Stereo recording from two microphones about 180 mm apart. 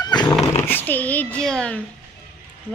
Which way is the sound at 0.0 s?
25° left (ahead or behind).